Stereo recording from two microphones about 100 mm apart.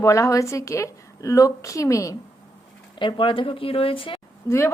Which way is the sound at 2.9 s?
55° left (ahead or behind).